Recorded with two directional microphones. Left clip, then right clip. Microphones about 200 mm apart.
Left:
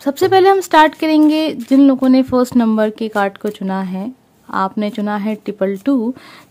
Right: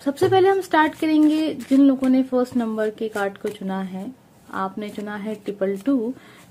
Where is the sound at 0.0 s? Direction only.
30° left (ahead or behind).